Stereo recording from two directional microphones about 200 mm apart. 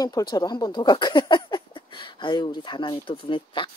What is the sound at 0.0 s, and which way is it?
Speech, 20° left (ahead or behind).